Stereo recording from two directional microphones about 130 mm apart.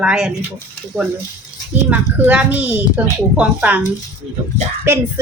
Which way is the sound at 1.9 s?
10° right (ahead or behind).